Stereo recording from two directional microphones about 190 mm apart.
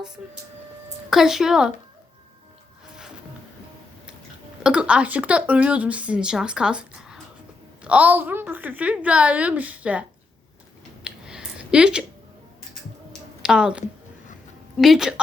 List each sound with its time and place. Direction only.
0.2 s speech: centre (ahead or behind)
4.6 s a woman's voice: 5° right (ahead or behind)
11.0 s a sound: 5° right (ahead or behind)
13.4 s speech: 5° right (ahead or behind)